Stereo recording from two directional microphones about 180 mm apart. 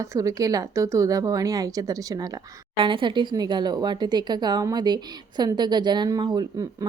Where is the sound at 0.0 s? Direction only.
20° right (ahead or behind).